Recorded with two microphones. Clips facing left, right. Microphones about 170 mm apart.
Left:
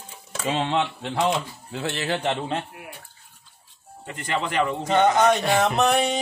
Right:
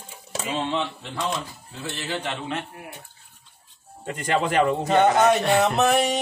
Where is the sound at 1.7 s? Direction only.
75° left (ahead or behind).